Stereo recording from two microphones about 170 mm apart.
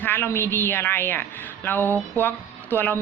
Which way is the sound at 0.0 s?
10° left (ahead or behind).